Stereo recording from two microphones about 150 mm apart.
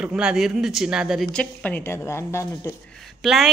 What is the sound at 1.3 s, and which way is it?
A woman's voice, 10° left (ahead or behind).